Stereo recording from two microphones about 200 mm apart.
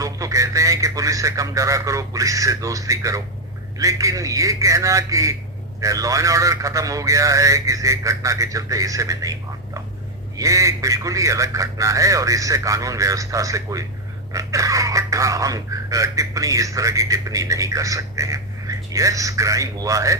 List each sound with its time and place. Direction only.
0.0 s speech: 15° right (ahead or behind)
10.3 s speech: 15° right (ahead or behind)